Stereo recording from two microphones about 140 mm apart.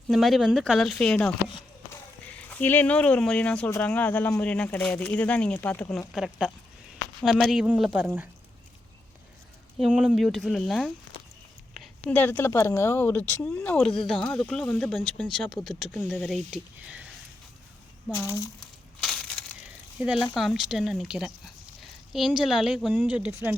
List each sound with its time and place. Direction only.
0.1 s speech: centre (ahead or behind)
1.9 s a sound: 10° left (ahead or behind)
3.7 s speech: 10° left (ahead or behind); by 8.3 s 15° right (ahead or behind)
9.7 s speech: 5° right (ahead or behind)
16.8 s sniff: 10° right (ahead or behind)
18.1 s speech: 25° left (ahead or behind)
19.0 s crushing: centre (ahead or behind)
20.0 s speech: 5° right (ahead or behind)